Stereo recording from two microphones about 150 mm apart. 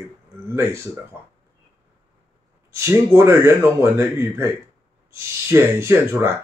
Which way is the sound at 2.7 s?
20° right (ahead or behind).